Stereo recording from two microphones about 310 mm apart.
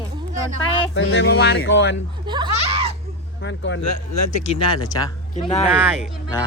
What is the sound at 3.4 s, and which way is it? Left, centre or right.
Speech, left.